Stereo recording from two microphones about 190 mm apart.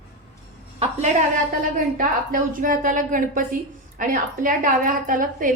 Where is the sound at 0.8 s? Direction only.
40° right (ahead or behind).